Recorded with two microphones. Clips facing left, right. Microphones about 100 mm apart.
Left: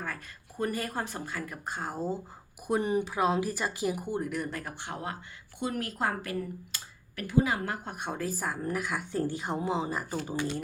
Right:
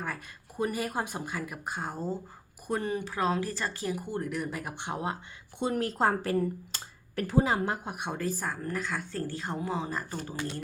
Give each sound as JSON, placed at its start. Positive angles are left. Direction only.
{"t": 0.6, "sound": "speech", "side_deg": -10}
{"t": 2.6, "sound": "speech", "side_deg": 10}
{"t": 4.2, "sound": "speech", "side_deg": 0}
{"t": 4.6, "sound": "a woman's voice", "side_deg": -20}
{"t": 7.9, "sound": "speech", "side_deg": -5}